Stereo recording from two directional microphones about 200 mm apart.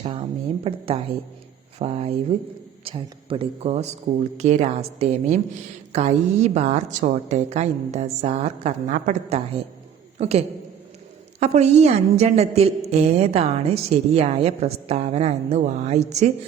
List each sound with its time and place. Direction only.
0.0 s a woman's voice: 30° right (ahead or behind)